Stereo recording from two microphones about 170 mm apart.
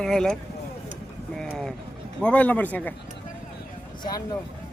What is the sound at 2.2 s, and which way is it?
Speech, 10° left (ahead or behind).